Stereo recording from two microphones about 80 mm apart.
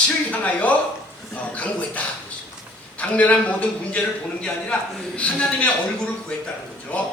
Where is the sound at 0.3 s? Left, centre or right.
Centre.